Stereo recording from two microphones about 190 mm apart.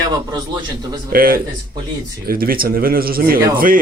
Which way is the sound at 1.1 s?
50° right (ahead or behind).